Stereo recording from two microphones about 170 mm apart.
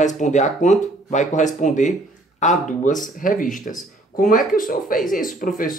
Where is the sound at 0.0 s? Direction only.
45° left (ahead or behind).